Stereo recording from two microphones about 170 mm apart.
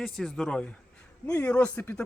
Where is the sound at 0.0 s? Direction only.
5° left (ahead or behind).